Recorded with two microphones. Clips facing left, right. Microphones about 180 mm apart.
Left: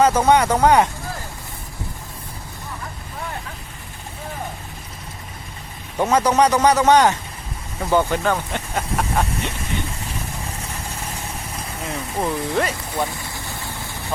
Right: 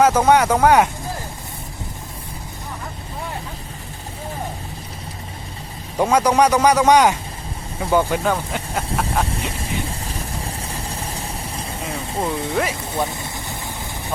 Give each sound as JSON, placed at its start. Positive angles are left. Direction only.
{"t": 0.0, "sound": "speech", "side_deg": -10}
{"t": 6.0, "sound": "speech", "side_deg": -10}
{"t": 10.0, "sound": "vehicle", "side_deg": -35}
{"t": 12.2, "sound": "speech", "side_deg": 0}
{"t": 12.9, "sound": "vehicle", "side_deg": -20}